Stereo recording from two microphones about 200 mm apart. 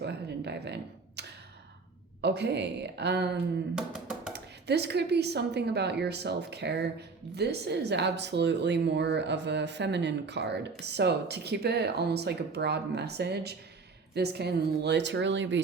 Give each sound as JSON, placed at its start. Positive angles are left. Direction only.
{"t": 0.0, "sound": "a sound", "side_deg": -55}
{"t": 2.2, "sound": "speech", "side_deg": -55}
{"t": 3.8, "sound": "speech", "side_deg": -5}
{"t": 4.3, "sound": "speech", "side_deg": -55}